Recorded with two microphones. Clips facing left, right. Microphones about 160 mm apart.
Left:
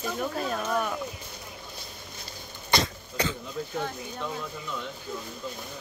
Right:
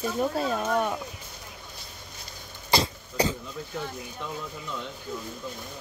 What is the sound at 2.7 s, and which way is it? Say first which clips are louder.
Cough: right 2 dB; 35° right (ahead or behind).